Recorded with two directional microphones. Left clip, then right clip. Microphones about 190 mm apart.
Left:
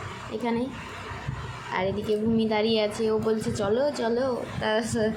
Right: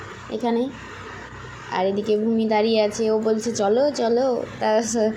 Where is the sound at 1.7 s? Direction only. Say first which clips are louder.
Right 6 dB; 15° right (ahead or behind).